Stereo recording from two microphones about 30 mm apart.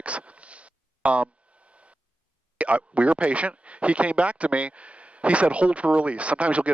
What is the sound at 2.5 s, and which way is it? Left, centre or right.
Speech, right.